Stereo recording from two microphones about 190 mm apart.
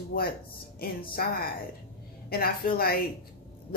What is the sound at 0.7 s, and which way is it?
Speech, 50° left (ahead or behind).